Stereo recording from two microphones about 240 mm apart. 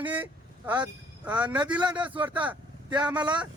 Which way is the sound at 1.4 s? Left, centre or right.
Centre.